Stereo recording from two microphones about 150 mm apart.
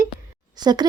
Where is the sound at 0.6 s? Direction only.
30° right (ahead or behind).